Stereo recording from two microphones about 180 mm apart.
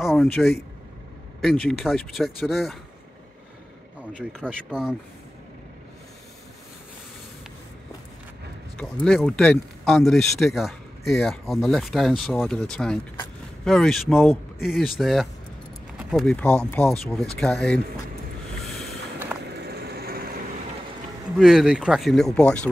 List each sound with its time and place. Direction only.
0.0 s speech: centre (ahead or behind)
4.2 s speech: 5° left (ahead or behind)
9.0 s speech: 5° left (ahead or behind)
19.6 s light engine: 60° right (ahead or behind)
21.4 s speech: centre (ahead or behind)